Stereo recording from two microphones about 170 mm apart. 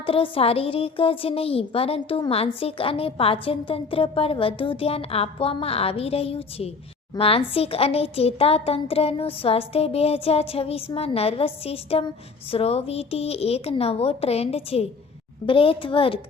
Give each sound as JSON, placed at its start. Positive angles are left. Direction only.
{"t": 0.0, "sound": "a woman's voice", "side_deg": 30}